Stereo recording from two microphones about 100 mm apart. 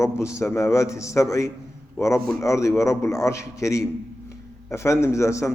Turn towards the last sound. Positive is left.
turn(degrees=30)  # may be behind; listen again after turning